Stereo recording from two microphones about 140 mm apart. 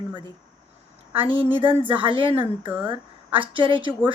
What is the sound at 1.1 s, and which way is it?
A woman's voice, 40° right (ahead or behind).